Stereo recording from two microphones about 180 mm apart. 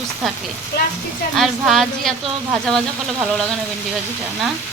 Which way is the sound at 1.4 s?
Centre (ahead or behind).